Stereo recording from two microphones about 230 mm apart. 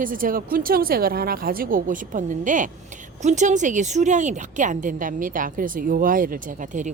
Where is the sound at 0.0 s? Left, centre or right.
Right.